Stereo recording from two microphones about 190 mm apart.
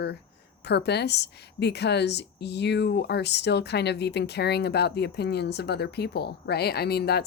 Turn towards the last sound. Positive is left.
turn(degrees=60)  # may be behind; listen again after turning